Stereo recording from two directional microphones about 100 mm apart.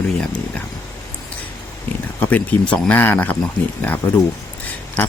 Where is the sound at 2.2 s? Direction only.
15° left (ahead or behind).